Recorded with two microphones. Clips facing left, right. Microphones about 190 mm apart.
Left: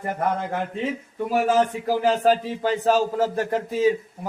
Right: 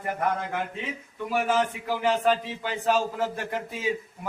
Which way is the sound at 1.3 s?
40° left (ahead or behind).